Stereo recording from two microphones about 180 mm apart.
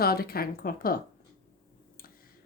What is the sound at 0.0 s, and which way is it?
Speech, 55° left (ahead or behind).